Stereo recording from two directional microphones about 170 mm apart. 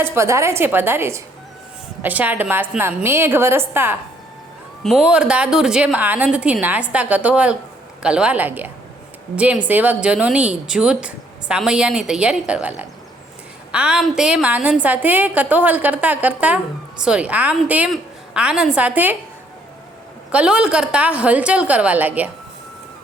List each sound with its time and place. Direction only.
0.0 s a woman's voice: 15° right (ahead or behind)
4.8 s a woman's voice: centre (ahead or behind)
20.3 s a woman's voice: 5° right (ahead or behind)